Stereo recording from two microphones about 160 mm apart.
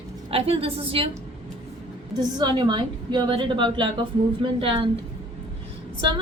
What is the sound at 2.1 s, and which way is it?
A woman's voice, 30° right (ahead or behind).